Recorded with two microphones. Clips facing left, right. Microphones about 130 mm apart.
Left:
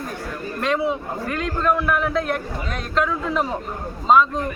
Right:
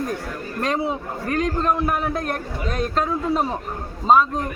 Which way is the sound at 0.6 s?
40° right (ahead or behind).